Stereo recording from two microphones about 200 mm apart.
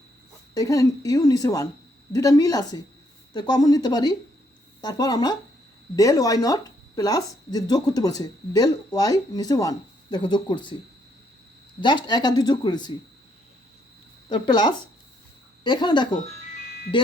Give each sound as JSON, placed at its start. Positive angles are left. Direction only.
{"t": 0.5, "sound": "a woman's voice", "side_deg": 15}
{"t": 11.8, "sound": "speech", "side_deg": 20}
{"t": 14.3, "sound": "speech", "side_deg": 20}